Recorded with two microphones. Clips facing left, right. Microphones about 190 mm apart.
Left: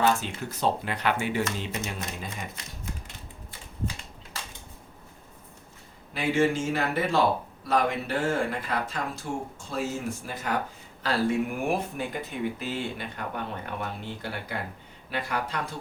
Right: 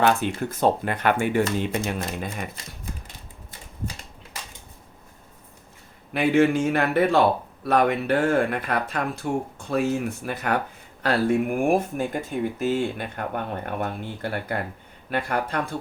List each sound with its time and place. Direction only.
0.0 s speech: 60° right (ahead or behind)
6.1 s speech: 60° right (ahead or behind)